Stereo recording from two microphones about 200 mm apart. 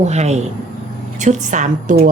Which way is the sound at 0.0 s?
35° right (ahead or behind).